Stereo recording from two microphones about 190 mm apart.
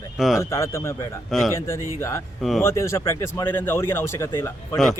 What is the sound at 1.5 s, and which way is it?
Speech, 15° left (ahead or behind).